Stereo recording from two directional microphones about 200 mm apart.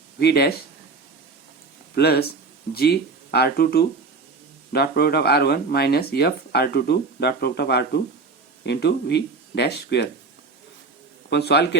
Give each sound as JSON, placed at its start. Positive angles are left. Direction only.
{"t": 0.2, "sound": "speech", "side_deg": 55}
{"t": 2.0, "sound": "speech", "side_deg": 50}
{"t": 11.3, "sound": "speech", "side_deg": 55}